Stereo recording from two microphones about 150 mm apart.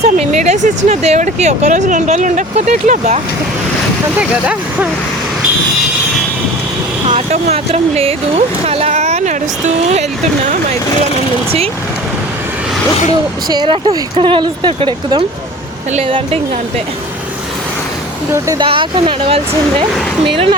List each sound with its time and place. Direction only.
0.0 s speech: 50° right (ahead or behind)
4.2 s speech: 10° right (ahead or behind)
7.1 s speech: 45° right (ahead or behind)
13.5 s speech: 30° right (ahead or behind)
18.3 s speech: 20° right (ahead or behind)
18.6 s speech: 35° right (ahead or behind)